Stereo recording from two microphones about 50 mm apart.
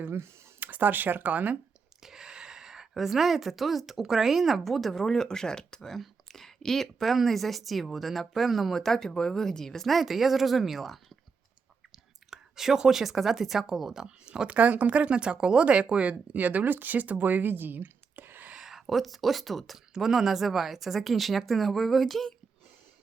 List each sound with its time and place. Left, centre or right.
0.0 s a sound: right
0.7 s speech: right
2.0 s a woman's voice: centre
12.3 s speech: centre
14.5 s speech: right
18.6 s a woman's voice: centre